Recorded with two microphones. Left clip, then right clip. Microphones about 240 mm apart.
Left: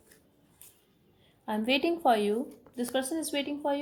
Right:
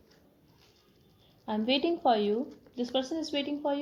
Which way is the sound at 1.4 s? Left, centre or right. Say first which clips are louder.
Left 1 dB; left.